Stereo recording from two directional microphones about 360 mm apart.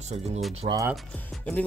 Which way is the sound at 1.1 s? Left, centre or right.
Centre.